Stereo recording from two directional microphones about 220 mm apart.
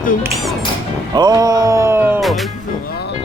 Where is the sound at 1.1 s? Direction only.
15° right (ahead or behind).